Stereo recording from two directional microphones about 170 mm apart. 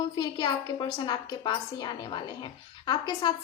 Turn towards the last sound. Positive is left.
turn(degrees=25)  # may be behind; listen again after turning